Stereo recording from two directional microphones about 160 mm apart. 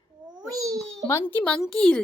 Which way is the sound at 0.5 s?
20° right (ahead or behind).